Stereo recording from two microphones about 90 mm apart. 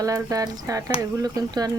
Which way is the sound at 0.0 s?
40° right (ahead or behind).